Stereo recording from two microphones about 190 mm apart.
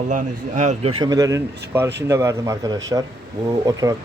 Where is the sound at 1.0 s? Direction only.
20° right (ahead or behind).